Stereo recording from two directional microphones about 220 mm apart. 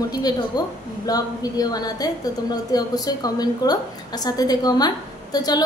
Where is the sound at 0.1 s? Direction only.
15° left (ahead or behind).